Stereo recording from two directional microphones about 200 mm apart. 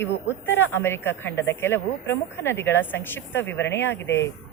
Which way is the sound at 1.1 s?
65° left (ahead or behind).